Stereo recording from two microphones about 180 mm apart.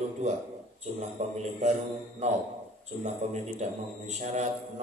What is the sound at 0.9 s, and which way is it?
Speech, 40° right (ahead or behind).